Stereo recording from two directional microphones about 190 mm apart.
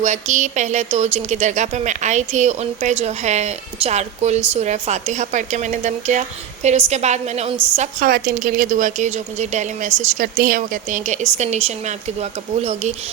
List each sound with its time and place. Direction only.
0.0 s a woman's voice: 40° right (ahead or behind)